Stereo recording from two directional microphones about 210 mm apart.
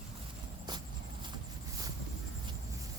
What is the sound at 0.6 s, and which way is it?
Walk, 20° right (ahead or behind).